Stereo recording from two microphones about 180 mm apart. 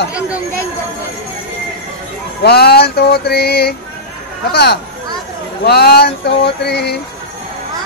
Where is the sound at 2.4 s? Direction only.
60° left (ahead or behind).